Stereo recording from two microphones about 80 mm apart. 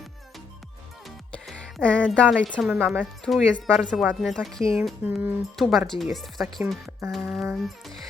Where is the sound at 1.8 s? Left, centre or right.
Centre.